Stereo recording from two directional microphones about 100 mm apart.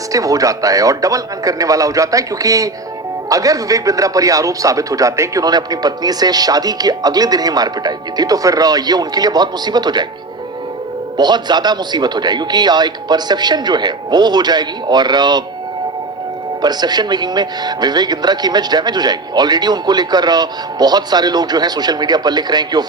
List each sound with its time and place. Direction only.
0.1 s a man's voice: 35° right (ahead or behind)
11.2 s a man's voice: 45° right (ahead or behind)
16.6 s a man's voice: 45° right (ahead or behind)